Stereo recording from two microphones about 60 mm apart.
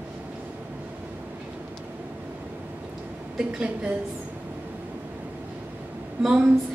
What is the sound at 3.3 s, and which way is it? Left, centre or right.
Speech, centre.